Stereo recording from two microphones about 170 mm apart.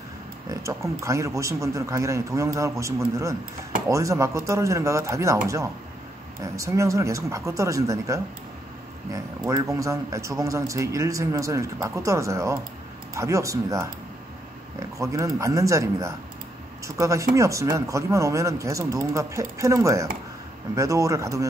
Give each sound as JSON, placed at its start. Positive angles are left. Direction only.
{"t": 0.5, "sound": "a man's voice", "side_deg": -15}
{"t": 15.0, "sound": "a man's voice", "side_deg": -20}